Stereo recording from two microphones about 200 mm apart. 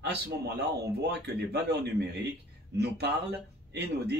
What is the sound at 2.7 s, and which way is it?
Speech, 55° right (ahead or behind).